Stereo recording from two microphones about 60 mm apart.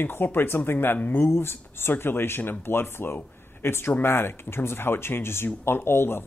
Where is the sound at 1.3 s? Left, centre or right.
Left.